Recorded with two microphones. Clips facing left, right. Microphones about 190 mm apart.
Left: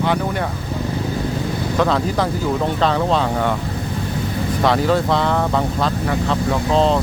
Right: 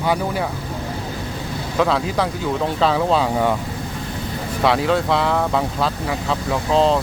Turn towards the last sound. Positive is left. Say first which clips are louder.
# left 1 dB
turn(degrees=0)  # may be behind; listen again after turning